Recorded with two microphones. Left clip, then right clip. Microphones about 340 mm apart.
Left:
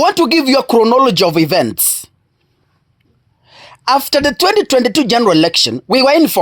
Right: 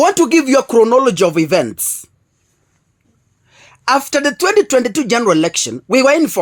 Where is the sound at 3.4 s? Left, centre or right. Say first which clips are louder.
Left 1 dB; left.